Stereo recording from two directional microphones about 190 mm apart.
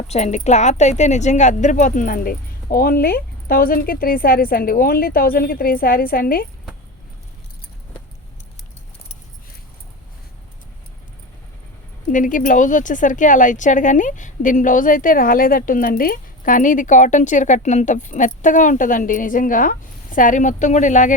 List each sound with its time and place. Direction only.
0.1 s speech: 35° left (ahead or behind)
12.0 s speech: 45° left (ahead or behind)